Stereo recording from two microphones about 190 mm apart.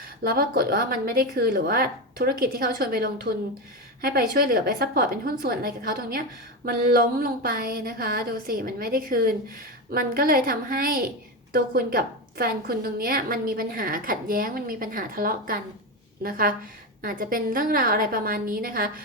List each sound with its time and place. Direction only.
0.2 s a woman's voice: 50° right (ahead or behind)